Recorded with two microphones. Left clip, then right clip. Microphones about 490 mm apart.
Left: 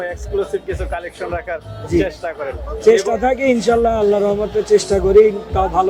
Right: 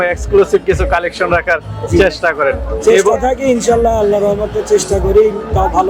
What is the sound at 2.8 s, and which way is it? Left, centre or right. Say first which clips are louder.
A man's voice: right 3 dB; left.